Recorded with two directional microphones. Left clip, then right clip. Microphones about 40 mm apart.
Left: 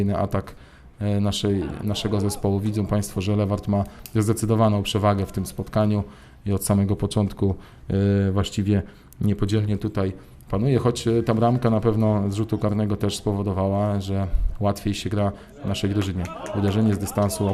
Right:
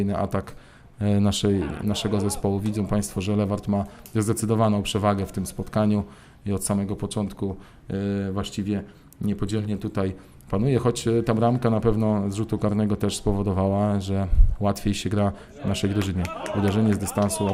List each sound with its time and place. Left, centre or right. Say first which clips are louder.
0.0 s speech: left 1 dB; right